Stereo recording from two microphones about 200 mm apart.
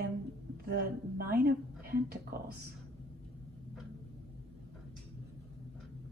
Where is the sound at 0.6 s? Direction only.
50° right (ahead or behind).